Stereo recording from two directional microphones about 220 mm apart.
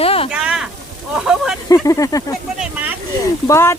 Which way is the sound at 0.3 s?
5° right (ahead or behind).